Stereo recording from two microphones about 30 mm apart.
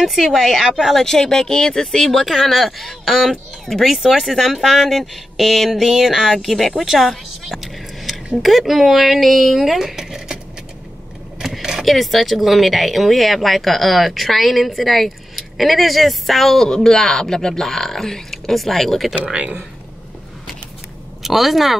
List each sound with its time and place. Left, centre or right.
0.0 s a woman's voice: centre
0.9 s speech: centre
2.5 s speech: centre
4.0 s speech: centre
5.8 s a woman's voice: centre
6.2 s speech: centre
7.4 s vehicle: centre
8.4 s speech: centre
11.8 s speech: centre
16.6 s speech: left
16.9 s speech: centre
21.2 s speech: centre